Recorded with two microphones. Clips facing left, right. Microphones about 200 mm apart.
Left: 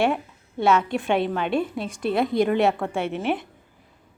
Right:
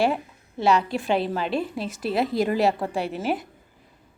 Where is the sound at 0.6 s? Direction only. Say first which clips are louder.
Left 1 dB; centre (ahead or behind).